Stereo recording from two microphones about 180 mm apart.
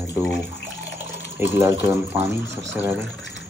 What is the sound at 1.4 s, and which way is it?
Speech, 15° right (ahead or behind).